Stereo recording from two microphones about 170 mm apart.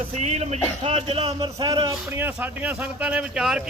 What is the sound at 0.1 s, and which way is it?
Speech, 40° right (ahead or behind).